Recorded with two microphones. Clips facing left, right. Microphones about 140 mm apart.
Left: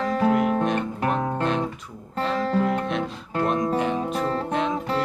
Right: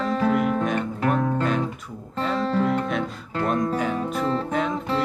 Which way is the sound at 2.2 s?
Centre (ahead or behind).